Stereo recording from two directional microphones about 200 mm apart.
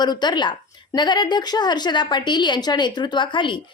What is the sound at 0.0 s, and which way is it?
A woman's voice, 20° left (ahead or behind).